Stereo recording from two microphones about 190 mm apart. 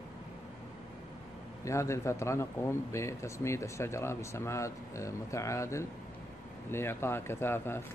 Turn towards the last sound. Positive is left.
turn(degrees=10)  # may be behind; listen again after turning